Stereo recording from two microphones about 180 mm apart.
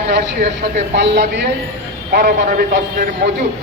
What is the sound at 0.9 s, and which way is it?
Speech, 70° right (ahead or behind).